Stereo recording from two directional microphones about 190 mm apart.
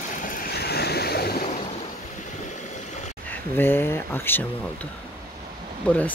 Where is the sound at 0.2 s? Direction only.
45° left (ahead or behind).